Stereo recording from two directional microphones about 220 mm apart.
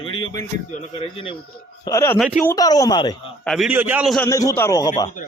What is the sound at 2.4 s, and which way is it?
Speech, 15° left (ahead or behind).